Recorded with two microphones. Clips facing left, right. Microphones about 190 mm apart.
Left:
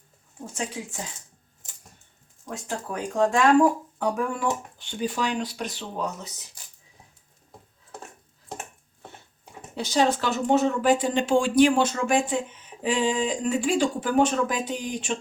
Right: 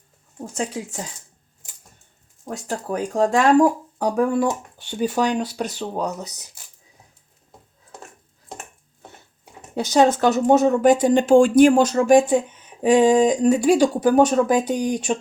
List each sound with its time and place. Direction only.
0.5 s speech: 40° right (ahead or behind)
2.4 s speech: 40° right (ahead or behind)
9.7 s speech: 45° right (ahead or behind)